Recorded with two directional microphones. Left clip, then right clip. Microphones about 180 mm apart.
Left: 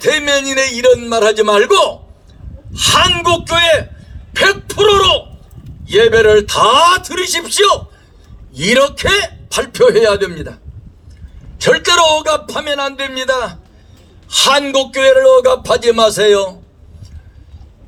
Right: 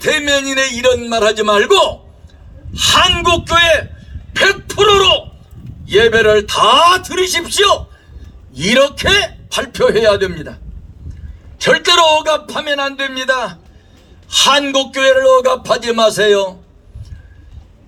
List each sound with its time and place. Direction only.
0.0 s a man's voice: 15° left (ahead or behind)